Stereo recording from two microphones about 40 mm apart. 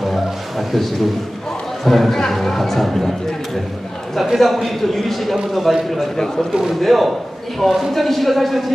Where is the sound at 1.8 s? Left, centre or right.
Centre.